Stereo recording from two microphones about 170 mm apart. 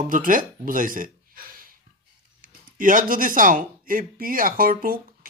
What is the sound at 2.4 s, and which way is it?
Speech, 50° right (ahead or behind).